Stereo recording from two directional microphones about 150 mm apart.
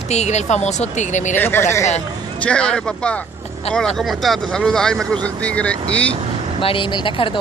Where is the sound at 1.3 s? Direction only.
15° left (ahead or behind).